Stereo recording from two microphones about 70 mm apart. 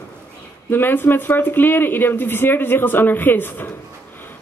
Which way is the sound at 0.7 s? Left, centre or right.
Left.